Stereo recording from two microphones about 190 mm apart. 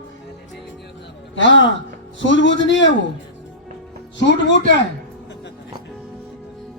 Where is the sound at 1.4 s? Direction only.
75° left (ahead or behind).